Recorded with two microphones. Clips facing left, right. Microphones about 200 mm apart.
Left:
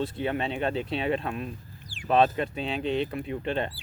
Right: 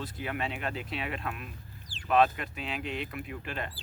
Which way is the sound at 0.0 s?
30° left (ahead or behind).